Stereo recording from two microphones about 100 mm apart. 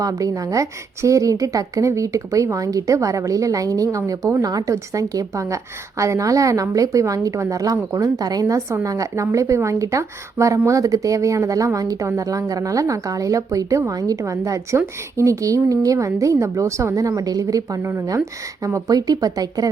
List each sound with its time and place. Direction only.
0.0 s speech: 35° right (ahead or behind)